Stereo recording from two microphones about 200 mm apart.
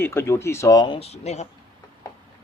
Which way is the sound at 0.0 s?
10° left (ahead or behind).